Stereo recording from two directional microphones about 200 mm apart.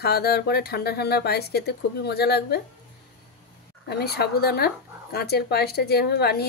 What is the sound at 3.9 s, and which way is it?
Speech, 55° left (ahead or behind).